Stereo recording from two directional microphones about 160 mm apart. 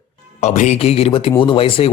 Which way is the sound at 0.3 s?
45° left (ahead or behind).